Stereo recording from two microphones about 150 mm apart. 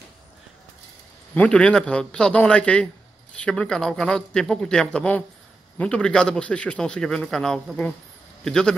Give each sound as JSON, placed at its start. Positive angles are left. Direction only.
{"t": 1.3, "sound": "a man's voice", "side_deg": 10}